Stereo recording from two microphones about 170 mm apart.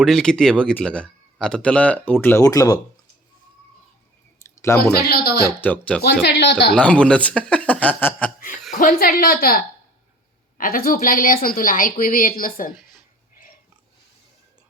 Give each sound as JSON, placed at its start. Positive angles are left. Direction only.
{"t": 0.0, "sound": "speech", "side_deg": 5}
{"t": 4.7, "sound": "speech", "side_deg": 15}
{"t": 5.0, "sound": "speech", "side_deg": 65}
{"t": 5.5, "sound": "speech", "side_deg": 10}
{"t": 6.2, "sound": "speech", "side_deg": 90}
{"t": 6.7, "sound": "speech", "side_deg": 5}
{"t": 8.8, "sound": "a woman's voice", "side_deg": 55}